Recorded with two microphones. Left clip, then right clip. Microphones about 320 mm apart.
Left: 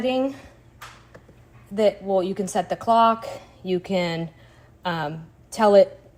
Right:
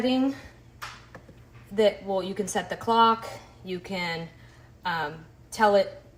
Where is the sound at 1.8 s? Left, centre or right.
Centre.